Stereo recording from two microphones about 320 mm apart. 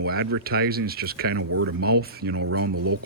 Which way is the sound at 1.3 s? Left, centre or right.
Right.